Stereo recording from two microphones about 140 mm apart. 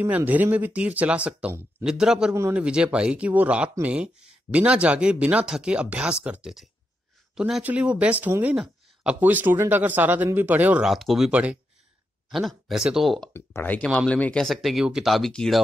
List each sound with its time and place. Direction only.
0.0 s speech: 10° right (ahead or behind)
13.3 s speech: 15° left (ahead or behind)